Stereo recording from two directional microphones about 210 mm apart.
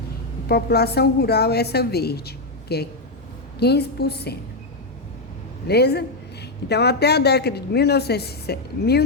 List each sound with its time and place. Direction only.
0.4 s a woman's voice: 50° left (ahead or behind)
5.6 s a woman's voice: 50° left (ahead or behind)